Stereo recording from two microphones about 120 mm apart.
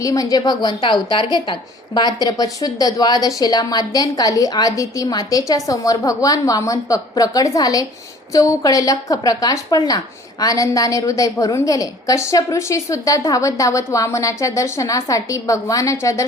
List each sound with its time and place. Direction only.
0.0 s a woman's voice: 30° left (ahead or behind)
2.0 s a woman's voice: 35° left (ahead or behind)